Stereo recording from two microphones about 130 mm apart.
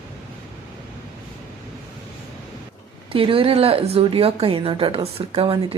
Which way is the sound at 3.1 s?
45° right (ahead or behind).